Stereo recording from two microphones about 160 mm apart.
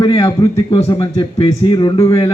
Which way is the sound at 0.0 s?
20° left (ahead or behind).